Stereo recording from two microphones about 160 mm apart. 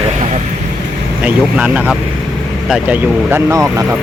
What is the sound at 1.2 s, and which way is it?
Speech, 5° right (ahead or behind).